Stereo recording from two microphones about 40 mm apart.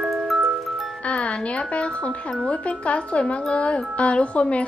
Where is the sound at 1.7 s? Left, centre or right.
Left.